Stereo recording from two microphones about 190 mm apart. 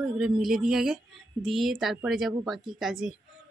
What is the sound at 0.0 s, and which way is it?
A woman's voice, 5° right (ahead or behind).